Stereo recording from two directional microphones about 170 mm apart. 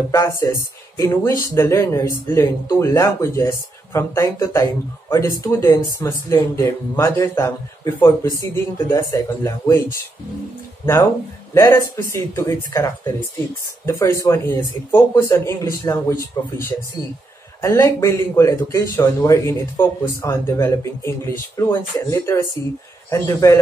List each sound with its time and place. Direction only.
0.1 s speech: 20° left (ahead or behind)
11.5 s speech: 15° left (ahead or behind)